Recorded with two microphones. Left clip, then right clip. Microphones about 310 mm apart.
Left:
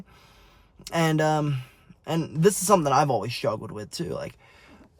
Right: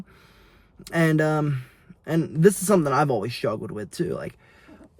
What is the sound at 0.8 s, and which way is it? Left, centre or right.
Speech, centre.